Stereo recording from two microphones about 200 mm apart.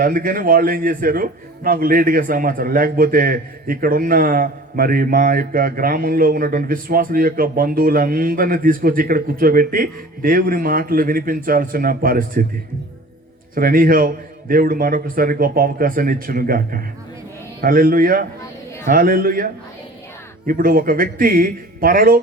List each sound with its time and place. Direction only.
0.0 s a man's voice: 45° right (ahead or behind)
13.6 s a man's voice: 45° right (ahead or behind)
20.5 s a man's voice: 45° right (ahead or behind)